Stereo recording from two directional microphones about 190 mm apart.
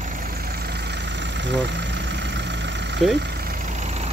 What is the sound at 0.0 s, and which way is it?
Vehicle, 50° right (ahead or behind).